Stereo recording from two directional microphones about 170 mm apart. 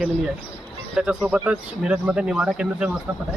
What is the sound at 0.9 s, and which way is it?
Speech, 5° right (ahead or behind).